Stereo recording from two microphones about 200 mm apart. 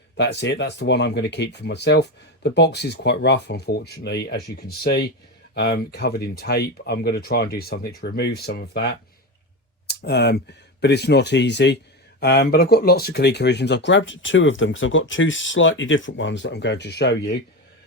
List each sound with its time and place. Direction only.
0.2 s speech: 60° left (ahead or behind)